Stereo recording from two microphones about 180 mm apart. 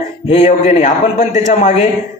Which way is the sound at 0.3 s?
40° left (ahead or behind).